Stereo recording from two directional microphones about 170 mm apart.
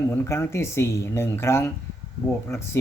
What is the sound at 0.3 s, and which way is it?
Speech, 15° left (ahead or behind).